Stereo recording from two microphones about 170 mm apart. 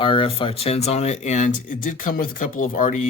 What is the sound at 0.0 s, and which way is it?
Speech, 30° left (ahead or behind).